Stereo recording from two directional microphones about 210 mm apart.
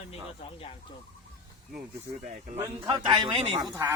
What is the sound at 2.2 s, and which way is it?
Speech, 30° right (ahead or behind).